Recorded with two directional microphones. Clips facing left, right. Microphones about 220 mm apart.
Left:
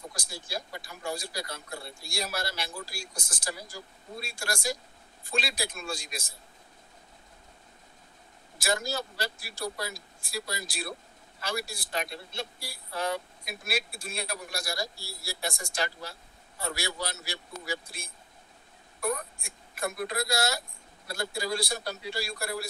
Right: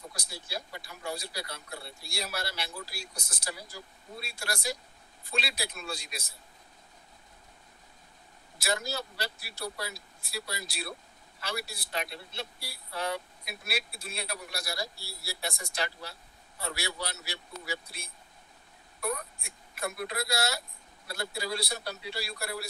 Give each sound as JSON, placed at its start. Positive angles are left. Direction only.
{"t": 0.1, "sound": "speech", "side_deg": 45}
{"t": 8.5, "sound": "speech", "side_deg": 45}